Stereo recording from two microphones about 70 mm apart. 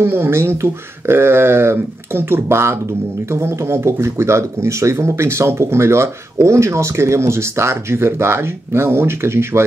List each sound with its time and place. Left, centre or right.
0.0 s speech: right